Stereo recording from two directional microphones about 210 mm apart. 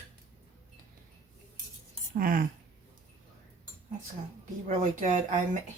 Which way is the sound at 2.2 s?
40° right (ahead or behind).